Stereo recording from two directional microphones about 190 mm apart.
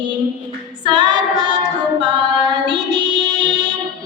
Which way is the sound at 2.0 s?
25° right (ahead or behind).